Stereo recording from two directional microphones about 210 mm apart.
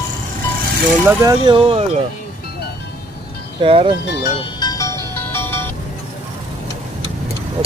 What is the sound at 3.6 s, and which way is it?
Speech, 25° right (ahead or behind).